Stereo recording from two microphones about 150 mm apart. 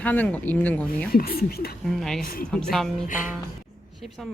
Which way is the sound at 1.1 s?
85° left.